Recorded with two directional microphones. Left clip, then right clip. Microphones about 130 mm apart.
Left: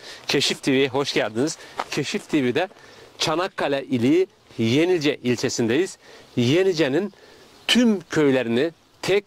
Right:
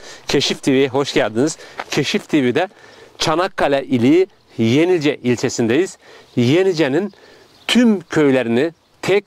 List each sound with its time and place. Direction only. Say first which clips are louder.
0.0 s speech: right 4 dB; 45° right (ahead or behind)
1.9 s speech: right 8 dB; 60° right (ahead or behind); by 9.2 s 45° right (ahead or behind)